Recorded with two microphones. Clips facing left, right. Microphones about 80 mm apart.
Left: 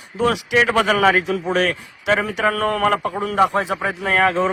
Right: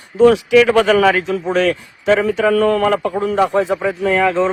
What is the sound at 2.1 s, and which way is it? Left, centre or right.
Speech, left.